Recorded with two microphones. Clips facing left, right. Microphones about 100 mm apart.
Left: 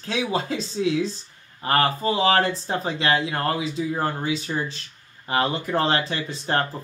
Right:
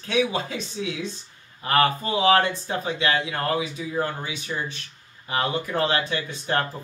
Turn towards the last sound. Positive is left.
turn(degrees=40)  # may be behind; listen again after turning